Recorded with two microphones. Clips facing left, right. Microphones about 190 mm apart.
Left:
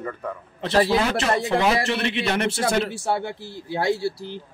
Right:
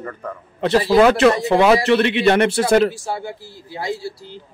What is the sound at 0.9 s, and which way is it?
A man's voice, 70° right (ahead or behind).